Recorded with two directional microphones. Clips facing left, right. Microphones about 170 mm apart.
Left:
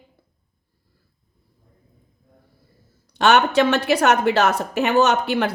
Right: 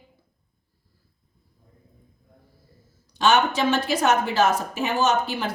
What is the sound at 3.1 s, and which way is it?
A woman's voice, 65° left (ahead or behind).